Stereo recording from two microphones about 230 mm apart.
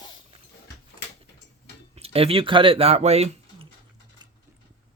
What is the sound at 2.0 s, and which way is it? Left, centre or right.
Speech, right.